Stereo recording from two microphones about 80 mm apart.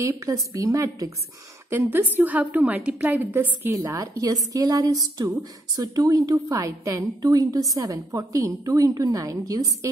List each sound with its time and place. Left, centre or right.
0.0 s a woman's voice: right
1.9 s a woman's voice: right
3.3 s a woman's voice: right